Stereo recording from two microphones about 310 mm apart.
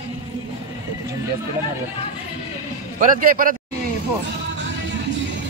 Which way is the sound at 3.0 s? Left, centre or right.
Right.